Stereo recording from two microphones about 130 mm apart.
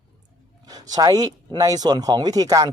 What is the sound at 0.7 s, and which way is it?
Speech, 30° right (ahead or behind).